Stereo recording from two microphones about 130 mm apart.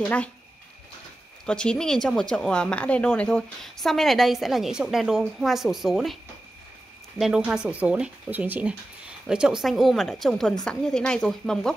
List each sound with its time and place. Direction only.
0.0 s speech: 10° left (ahead or behind)
1.4 s speech: 5° left (ahead or behind)
7.2 s speech: 5° right (ahead or behind)